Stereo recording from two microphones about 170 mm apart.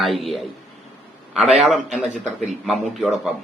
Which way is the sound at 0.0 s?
Centre (ahead or behind).